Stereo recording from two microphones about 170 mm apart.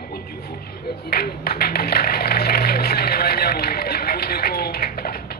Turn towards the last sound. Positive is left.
turn(degrees=65)  # may be behind; listen again after turning